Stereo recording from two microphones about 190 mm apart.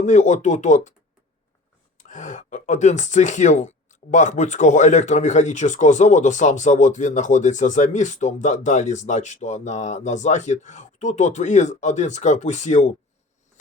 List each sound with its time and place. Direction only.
0.0 s speech: 40° left (ahead or behind)
2.0 s speech: 40° left (ahead or behind)